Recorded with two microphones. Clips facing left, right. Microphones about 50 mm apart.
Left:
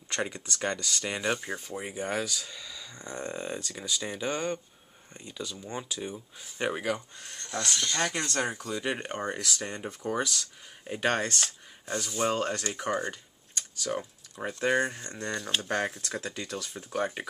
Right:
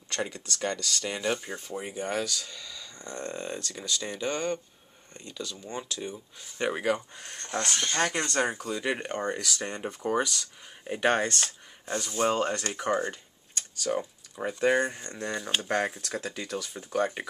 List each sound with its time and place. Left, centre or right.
0.1 s speech: centre
7.2 s speech: right
8.1 s speech: centre
9.0 s speech: centre
9.6 s speech: centre
11.2 s speech: centre